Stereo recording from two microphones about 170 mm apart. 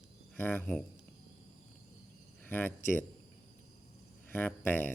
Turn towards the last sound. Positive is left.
turn(degrees=10)  # may be behind; listen again after turning